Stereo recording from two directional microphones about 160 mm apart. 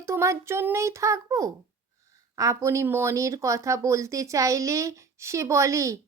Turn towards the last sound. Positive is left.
turn(degrees=-20)  # may be behind; listen again after turning